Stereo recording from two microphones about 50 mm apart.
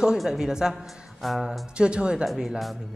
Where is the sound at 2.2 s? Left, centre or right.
Centre.